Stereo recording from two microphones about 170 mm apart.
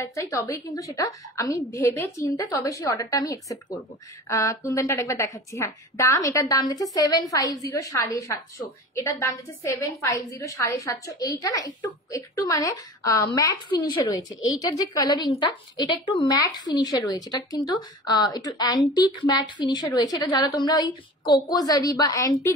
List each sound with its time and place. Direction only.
0.0 s a woman's voice: 20° left (ahead or behind)